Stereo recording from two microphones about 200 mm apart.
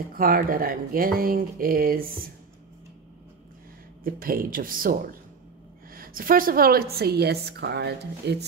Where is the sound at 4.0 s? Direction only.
45° right (ahead or behind).